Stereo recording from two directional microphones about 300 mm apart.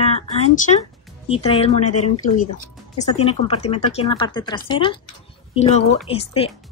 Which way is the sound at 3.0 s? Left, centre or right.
Centre.